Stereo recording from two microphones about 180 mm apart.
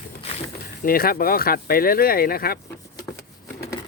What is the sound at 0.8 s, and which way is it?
Speech, 55° left (ahead or behind).